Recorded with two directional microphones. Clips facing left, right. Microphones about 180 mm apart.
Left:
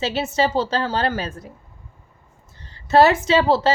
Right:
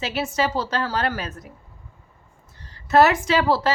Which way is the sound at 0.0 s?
25° left (ahead or behind).